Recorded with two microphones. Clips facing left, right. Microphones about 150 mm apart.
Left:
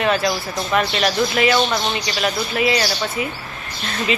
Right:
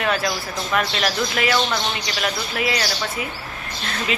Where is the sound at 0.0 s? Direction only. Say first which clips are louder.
Left 3 dB; centre (ahead or behind).